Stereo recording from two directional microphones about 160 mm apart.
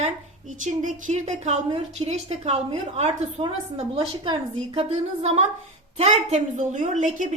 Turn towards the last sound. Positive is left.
turn(degrees=-50)  # may be behind; listen again after turning